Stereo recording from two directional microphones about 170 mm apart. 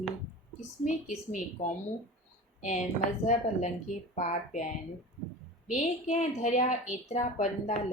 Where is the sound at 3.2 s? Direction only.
45° left (ahead or behind).